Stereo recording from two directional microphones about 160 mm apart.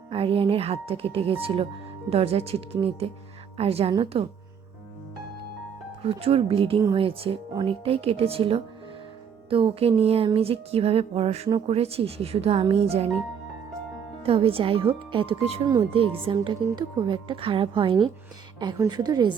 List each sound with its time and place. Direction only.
0.1 s speech: 35° right (ahead or behind)
6.0 s speech: 40° right (ahead or behind)
14.2 s a woman's voice: 35° right (ahead or behind)